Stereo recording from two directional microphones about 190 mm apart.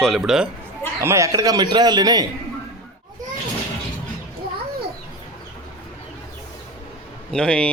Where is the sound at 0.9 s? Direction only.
15° right (ahead or behind).